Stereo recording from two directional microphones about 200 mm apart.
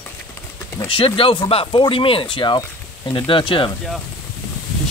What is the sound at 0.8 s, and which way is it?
Speech, 25° left (ahead or behind).